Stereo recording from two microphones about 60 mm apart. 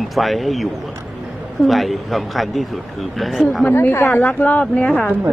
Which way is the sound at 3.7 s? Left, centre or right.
Left.